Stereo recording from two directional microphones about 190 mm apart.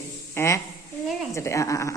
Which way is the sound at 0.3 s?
15° left (ahead or behind).